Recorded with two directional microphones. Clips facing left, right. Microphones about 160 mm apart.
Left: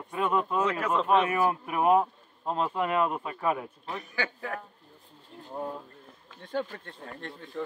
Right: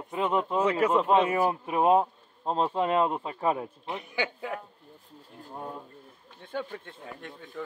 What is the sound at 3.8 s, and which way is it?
Speech, 15° right (ahead or behind).